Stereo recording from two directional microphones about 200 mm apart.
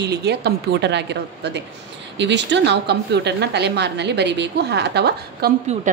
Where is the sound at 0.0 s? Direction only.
55° right (ahead or behind).